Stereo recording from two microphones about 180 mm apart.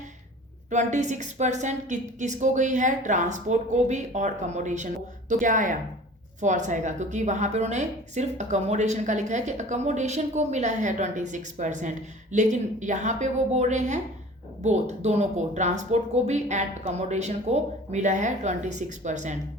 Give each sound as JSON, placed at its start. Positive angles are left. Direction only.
{"t": 0.7, "sound": "a woman's voice", "side_deg": -40}